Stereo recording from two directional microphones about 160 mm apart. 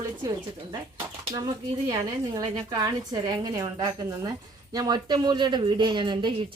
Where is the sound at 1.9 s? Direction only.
25° right (ahead or behind).